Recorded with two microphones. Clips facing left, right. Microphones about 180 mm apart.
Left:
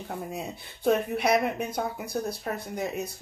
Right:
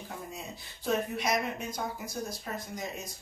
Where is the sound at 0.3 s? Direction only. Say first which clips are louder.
Left 7 dB; 60° left (ahead or behind).